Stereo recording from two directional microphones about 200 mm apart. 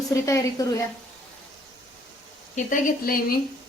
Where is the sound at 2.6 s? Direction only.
40° left (ahead or behind).